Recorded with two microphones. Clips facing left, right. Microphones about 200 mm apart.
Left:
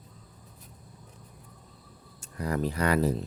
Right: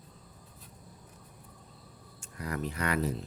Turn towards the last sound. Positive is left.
turn(degrees=35)  # may be behind; listen again after turning